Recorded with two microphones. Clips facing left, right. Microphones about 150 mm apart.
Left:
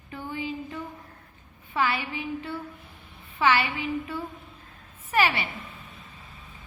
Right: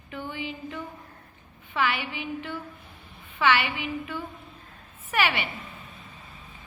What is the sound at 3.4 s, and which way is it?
A woman's voice, 35° left (ahead or behind).